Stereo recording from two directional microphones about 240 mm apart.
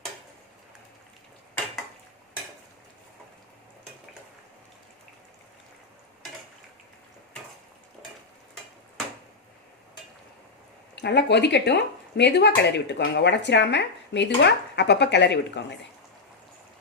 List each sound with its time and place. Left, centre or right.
10.9 s speech: left